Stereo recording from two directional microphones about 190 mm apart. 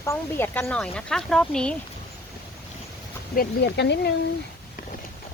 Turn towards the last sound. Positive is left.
turn(degrees=65)  # may be behind; listen again after turning